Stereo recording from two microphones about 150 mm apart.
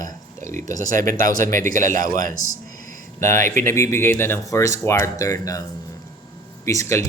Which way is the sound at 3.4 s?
55° right (ahead or behind).